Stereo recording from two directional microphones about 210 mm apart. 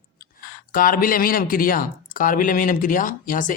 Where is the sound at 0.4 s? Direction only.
40° left (ahead or behind).